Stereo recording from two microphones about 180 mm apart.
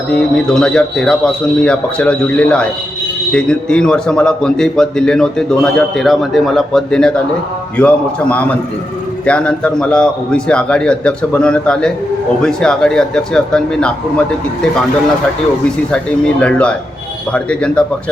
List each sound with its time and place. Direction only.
0.1 s a man's voice: 5° left (ahead or behind)
16.4 s a man's voice: 5° left (ahead or behind)